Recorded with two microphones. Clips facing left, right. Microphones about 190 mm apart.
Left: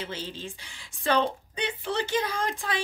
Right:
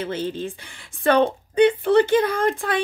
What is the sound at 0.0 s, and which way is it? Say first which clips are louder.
A woman's voice: right 10 dB; 55° right (ahead or behind).